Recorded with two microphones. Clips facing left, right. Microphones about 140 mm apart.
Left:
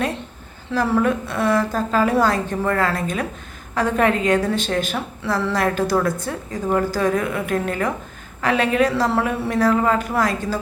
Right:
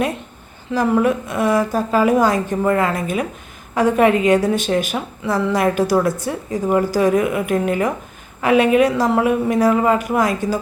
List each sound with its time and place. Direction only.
0.7 s a woman's voice: 10° right (ahead or behind)